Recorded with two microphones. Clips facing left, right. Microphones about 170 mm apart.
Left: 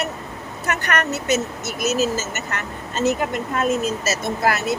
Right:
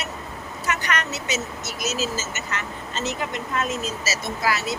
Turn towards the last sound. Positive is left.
turn(degrees=55)  # may be behind; listen again after turning